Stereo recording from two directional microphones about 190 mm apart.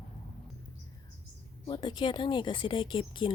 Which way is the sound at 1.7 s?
25° left (ahead or behind).